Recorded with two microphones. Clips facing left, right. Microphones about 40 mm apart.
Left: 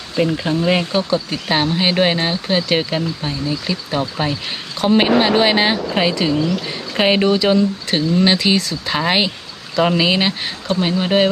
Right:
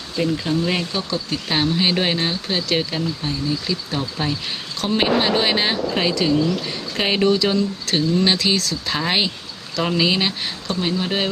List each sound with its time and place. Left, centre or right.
0.2 s speech: left